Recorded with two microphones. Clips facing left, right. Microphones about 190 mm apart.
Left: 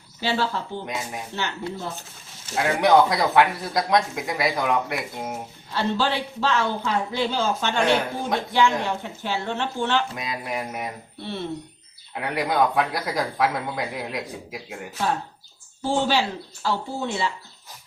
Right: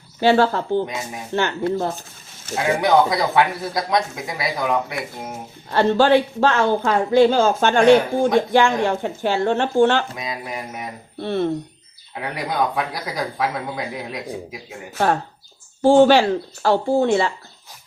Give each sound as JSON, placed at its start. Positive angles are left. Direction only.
{"t": 0.2, "sound": "speech", "side_deg": -55}
{"t": 2.6, "sound": "speech", "side_deg": 0}
{"t": 5.7, "sound": "speech", "side_deg": -50}
{"t": 10.2, "sound": "speech", "side_deg": 0}
{"t": 11.2, "sound": "speech", "side_deg": -50}
{"t": 12.1, "sound": "speech", "side_deg": 0}
{"t": 14.9, "sound": "speech", "side_deg": -60}
{"t": 16.6, "sound": "speech", "side_deg": -55}